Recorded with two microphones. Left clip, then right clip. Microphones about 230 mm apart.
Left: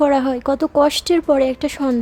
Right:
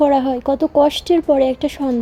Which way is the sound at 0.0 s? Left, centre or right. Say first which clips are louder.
Right 1 dB; centre.